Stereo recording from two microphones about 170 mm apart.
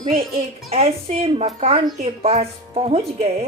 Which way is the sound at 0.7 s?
35° right (ahead or behind).